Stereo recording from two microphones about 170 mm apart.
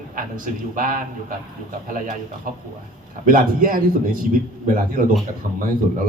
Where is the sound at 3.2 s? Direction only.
50° right (ahead or behind).